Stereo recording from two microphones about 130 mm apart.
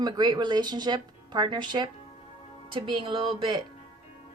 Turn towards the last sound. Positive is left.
turn(degrees=-40)  # may be behind; listen again after turning